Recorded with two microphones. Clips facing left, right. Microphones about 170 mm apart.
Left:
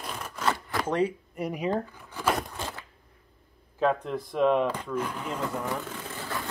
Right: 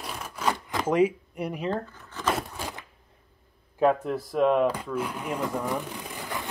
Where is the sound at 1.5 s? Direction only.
10° left (ahead or behind).